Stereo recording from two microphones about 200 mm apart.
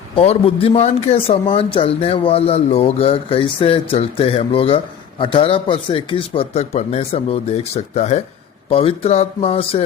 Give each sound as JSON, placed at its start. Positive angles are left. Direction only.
{"t": 0.2, "sound": "speech", "side_deg": 30}